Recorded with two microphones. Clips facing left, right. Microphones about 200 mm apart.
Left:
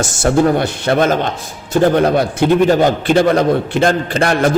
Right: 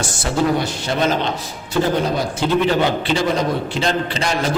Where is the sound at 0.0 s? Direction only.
50° left (ahead or behind).